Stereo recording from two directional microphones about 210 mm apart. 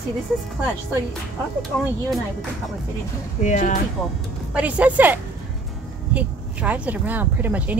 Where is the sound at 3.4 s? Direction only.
35° left (ahead or behind).